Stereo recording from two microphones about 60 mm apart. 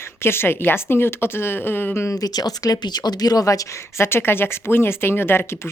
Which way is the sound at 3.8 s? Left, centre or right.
Left.